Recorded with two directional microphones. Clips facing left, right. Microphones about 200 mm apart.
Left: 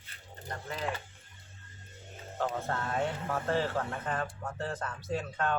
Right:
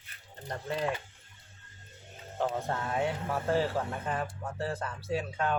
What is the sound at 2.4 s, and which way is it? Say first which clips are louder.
Speech: right 2 dB; 15° right (ahead or behind).